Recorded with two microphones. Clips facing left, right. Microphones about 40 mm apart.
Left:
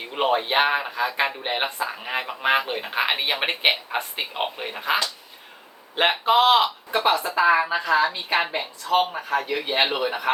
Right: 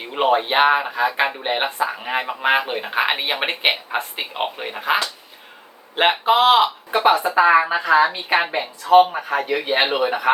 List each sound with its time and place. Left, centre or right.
0.0 s speech: centre
6.0 s a woman's voice: centre